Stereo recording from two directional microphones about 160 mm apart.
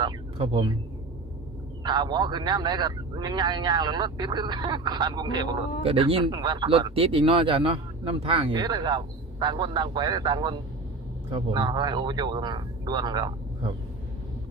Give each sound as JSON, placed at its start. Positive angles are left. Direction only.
{"t": 0.0, "sound": "speech", "side_deg": -30}
{"t": 1.8, "sound": "speech", "side_deg": -25}